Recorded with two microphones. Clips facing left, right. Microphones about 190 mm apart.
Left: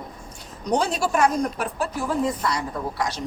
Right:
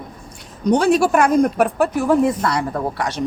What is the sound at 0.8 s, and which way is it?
Speech, 65° right (ahead or behind).